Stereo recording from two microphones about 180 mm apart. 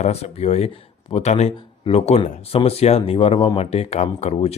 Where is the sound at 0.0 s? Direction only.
35° left (ahead or behind).